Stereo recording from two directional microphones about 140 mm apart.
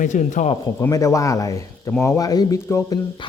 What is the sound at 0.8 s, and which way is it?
Speech, 25° left (ahead or behind).